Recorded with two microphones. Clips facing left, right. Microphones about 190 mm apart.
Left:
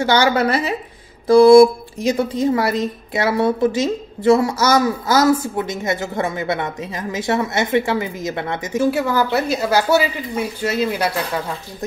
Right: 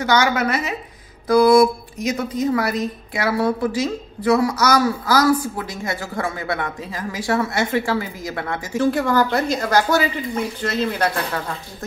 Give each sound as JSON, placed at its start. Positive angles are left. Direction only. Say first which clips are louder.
{"t": 0.0, "sound": "a woman's voice", "louder": "left 3 dB", "side_deg": 30}
{"t": 8.9, "sound": "speech", "louder": "even", "side_deg": 10}